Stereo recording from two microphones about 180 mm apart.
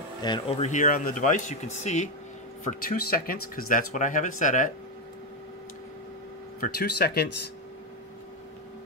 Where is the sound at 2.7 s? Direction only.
55° left (ahead or behind).